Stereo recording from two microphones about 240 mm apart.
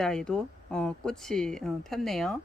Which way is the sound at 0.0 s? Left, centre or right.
Centre.